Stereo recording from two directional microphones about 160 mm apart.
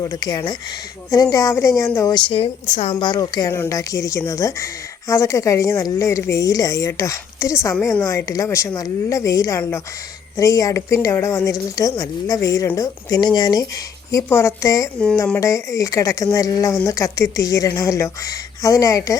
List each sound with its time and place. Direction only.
0.0 s speech: 25° left (ahead or behind)